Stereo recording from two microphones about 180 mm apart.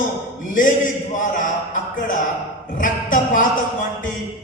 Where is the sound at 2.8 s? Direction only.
50° left (ahead or behind).